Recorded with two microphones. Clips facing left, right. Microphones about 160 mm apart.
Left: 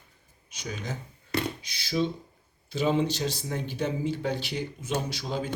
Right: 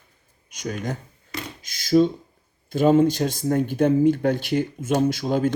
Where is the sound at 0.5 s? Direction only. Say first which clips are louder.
Right 7 dB; 50° right (ahead or behind).